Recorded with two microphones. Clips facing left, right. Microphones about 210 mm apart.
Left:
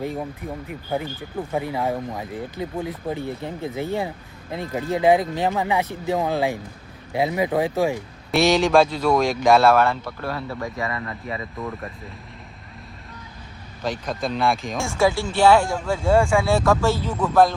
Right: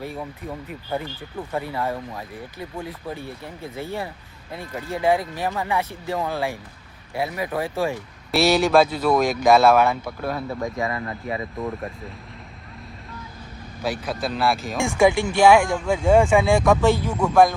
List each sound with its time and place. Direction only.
0.0 s speech: 20° left (ahead or behind)
8.3 s speech: 5° right (ahead or behind)
10.8 s speech: centre (ahead or behind)
13.8 s speech: 5° right (ahead or behind)
14.8 s speech: 15° right (ahead or behind)